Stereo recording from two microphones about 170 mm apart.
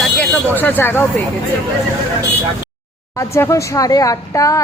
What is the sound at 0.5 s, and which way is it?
Speech, 10° left (ahead or behind).